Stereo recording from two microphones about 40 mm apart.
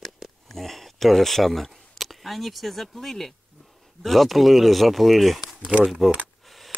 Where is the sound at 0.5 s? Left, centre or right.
Centre.